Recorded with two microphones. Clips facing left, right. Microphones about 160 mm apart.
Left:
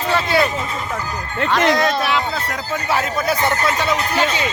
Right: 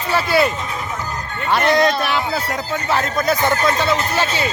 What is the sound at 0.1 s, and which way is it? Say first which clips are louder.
Speech: right 1 dB; 5° right (ahead or behind).